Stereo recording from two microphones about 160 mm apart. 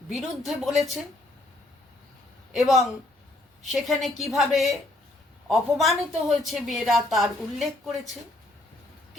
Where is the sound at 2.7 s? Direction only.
Centre (ahead or behind).